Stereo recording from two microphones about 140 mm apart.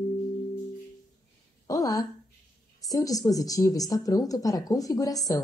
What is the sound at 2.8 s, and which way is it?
Speech, 25° left (ahead or behind).